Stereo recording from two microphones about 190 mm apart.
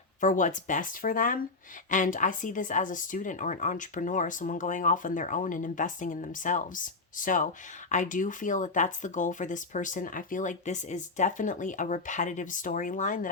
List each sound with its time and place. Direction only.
0.2 s speech: 40° left (ahead or behind)